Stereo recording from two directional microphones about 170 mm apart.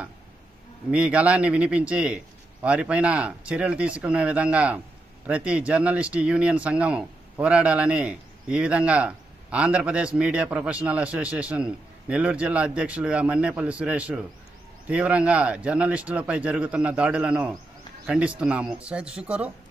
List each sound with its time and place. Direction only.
0.9 s a man's voice: 5° right (ahead or behind)